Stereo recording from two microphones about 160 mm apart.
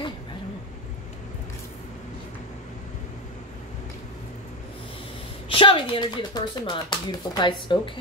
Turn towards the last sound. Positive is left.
turn(degrees=30)  # may be behind; listen again after turning